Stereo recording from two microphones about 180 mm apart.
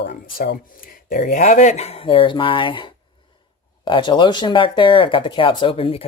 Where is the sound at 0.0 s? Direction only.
55° left (ahead or behind).